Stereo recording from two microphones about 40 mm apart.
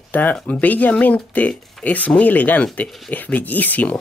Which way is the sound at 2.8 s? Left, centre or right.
Centre.